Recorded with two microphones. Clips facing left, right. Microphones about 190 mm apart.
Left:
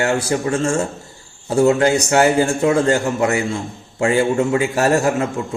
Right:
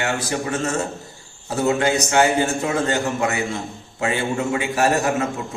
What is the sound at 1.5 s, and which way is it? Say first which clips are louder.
A man's voice: left 5 dB; 35° left (ahead or behind).